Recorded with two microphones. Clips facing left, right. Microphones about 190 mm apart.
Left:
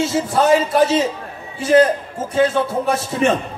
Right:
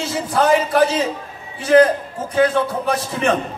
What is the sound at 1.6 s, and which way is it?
A man's voice, 25° left (ahead or behind).